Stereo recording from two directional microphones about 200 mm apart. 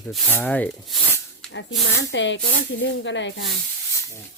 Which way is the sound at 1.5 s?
65° left (ahead or behind).